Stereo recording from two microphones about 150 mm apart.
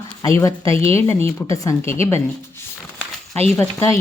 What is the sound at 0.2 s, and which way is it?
A woman's voice, 20° left (ahead or behind).